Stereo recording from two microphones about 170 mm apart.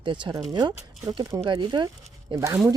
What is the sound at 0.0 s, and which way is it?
Speech, 30° right (ahead or behind).